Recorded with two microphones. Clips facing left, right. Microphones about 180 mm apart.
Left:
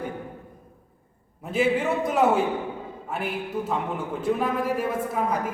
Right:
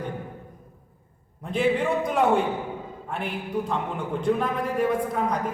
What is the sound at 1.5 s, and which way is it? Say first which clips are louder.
A man's voice: even; 5° left (ahead or behind).